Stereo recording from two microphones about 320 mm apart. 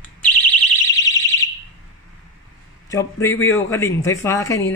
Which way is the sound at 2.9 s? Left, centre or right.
Centre.